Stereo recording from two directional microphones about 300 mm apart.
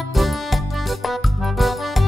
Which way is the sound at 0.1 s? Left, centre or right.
Centre.